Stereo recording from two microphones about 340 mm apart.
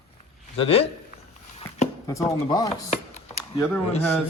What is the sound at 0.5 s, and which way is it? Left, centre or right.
Speech, centre.